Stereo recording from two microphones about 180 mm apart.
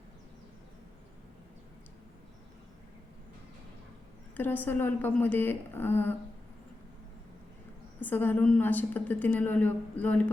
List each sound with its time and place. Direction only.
4.4 s a woman's voice: 10° left (ahead or behind)
7.9 s a woman's voice: 10° left (ahead or behind)